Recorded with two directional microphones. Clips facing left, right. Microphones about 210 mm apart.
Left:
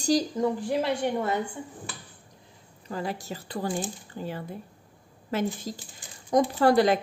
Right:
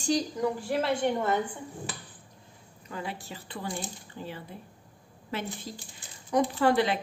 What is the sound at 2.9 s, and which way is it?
Speech, 40° left (ahead or behind).